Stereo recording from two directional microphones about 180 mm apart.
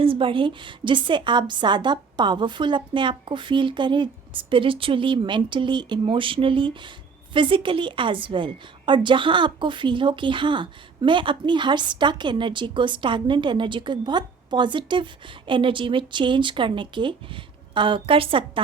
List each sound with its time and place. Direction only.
0.0 s a woman's voice: 30° right (ahead or behind)